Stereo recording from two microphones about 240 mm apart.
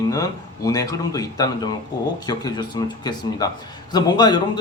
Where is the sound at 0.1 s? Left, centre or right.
Centre.